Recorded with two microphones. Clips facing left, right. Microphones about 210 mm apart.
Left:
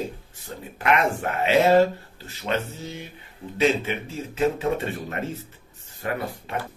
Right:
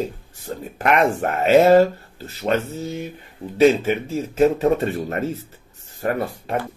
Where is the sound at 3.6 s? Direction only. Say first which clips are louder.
Right 7 dB; 45° right (ahead or behind).